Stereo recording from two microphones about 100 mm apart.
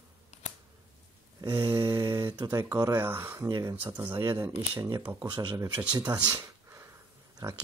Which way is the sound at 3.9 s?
25° right (ahead or behind).